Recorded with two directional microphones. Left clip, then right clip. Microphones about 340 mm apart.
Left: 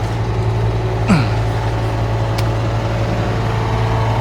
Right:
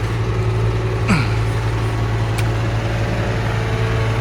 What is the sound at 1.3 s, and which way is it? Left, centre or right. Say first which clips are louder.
Vehicle: left 3 dB; left.